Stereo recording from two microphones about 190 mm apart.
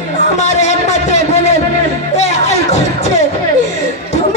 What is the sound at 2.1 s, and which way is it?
Music, 35° left (ahead or behind).